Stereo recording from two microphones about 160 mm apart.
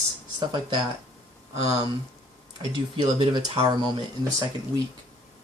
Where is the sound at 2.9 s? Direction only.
30° right (ahead or behind).